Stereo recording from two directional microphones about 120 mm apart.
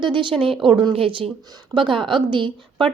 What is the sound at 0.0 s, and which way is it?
A woman's voice, 45° right (ahead or behind).